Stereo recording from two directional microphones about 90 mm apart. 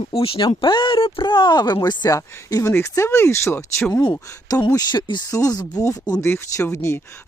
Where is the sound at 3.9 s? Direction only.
50° left (ahead or behind).